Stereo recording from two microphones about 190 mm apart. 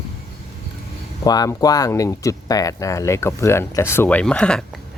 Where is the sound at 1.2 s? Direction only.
20° left (ahead or behind).